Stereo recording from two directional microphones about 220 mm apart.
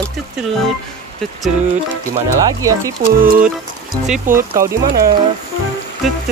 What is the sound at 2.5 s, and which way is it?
Speech, 15° right (ahead or behind).